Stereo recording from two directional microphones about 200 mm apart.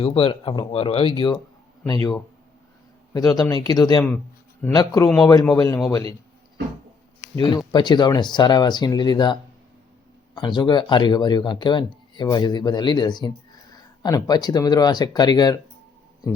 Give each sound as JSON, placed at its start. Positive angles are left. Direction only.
{"t": 0.0, "sound": "a man's voice", "side_deg": 30}
{"t": 7.3, "sound": "speech", "side_deg": 20}